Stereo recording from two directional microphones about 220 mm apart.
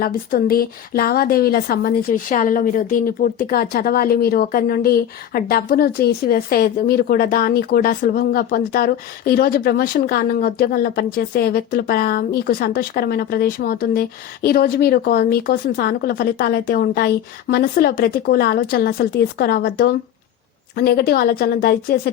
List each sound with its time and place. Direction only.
0.0 s a woman's voice: 40° left (ahead or behind)